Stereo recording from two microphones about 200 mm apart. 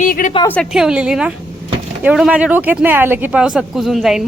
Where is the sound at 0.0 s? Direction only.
40° left (ahead or behind).